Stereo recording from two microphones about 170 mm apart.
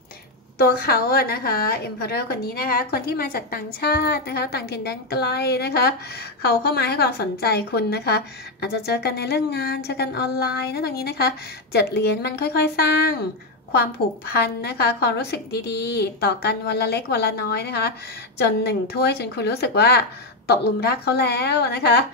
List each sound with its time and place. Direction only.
0.6 s a woman's voice: 65° left (ahead or behind)